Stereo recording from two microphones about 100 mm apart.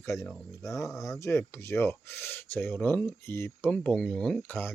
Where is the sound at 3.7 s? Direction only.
5° left (ahead or behind).